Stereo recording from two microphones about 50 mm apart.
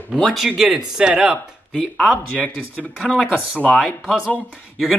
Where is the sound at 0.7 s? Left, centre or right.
Centre.